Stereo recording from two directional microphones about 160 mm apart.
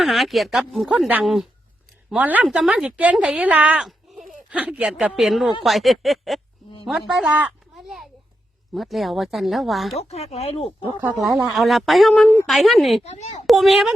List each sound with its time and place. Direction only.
0.0 s a woman's voice: centre (ahead or behind)
6.8 s a sound: centre (ahead or behind)
8.7 s speech: centre (ahead or behind)
10.0 s speech: 40° left (ahead or behind)
11.3 s speech: 5° right (ahead or behind)
13.0 s a woman's voice: 45° left (ahead or behind)
13.5 s speech: centre (ahead or behind)